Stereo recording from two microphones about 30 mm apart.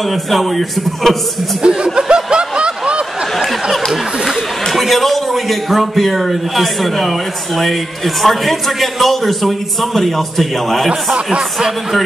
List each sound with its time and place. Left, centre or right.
0.1 s a man's voice: centre
1.6 s speech: right
2.0 s snicker: right
3.9 s a sound: centre
4.6 s a man's voice: centre